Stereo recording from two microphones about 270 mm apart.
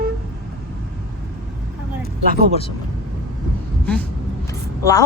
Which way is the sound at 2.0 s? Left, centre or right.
Right.